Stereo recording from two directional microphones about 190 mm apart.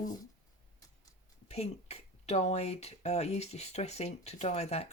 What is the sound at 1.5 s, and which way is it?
Speech, 35° left (ahead or behind).